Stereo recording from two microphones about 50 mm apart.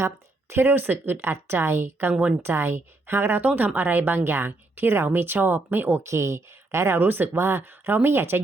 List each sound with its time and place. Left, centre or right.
0.5 s speech: right
1.3 s a woman's voice: right
3.8 s speech: right
6.1 s speech: right
7.0 s speech: right